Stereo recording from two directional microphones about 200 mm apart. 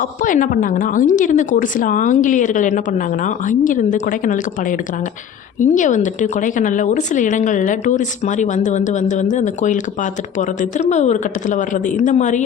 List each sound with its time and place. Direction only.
0.0 s a woman's voice: 40° left (ahead or behind)